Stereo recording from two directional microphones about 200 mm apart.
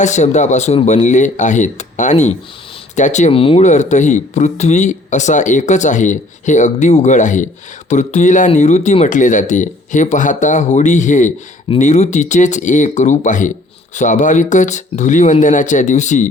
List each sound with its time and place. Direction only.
0.0 s speech: 35° left (ahead or behind)